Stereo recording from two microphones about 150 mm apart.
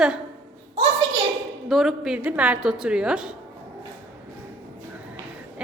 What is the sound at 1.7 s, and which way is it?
A woman's voice, centre (ahead or behind).